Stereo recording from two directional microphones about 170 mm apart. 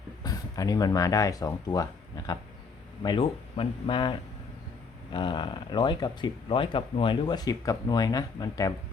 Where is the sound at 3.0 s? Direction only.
30° left (ahead or behind).